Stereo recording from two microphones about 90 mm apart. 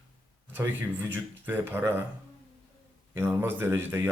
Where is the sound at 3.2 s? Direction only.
25° right (ahead or behind).